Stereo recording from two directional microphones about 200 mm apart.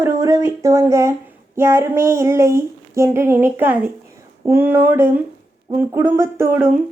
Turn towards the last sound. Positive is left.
turn(degrees=-15)  # may be behind; listen again after turning